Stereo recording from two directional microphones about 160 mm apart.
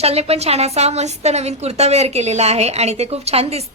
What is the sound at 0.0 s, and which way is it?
A woman's voice, 40° right (ahead or behind).